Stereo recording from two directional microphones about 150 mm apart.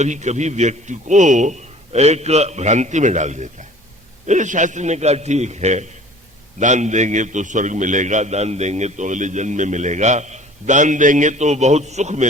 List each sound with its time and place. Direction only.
0.0 s a man's voice: 50° right (ahead or behind)